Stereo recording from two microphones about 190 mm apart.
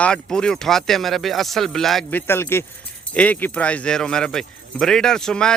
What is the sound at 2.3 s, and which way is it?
Speech, 10° left (ahead or behind).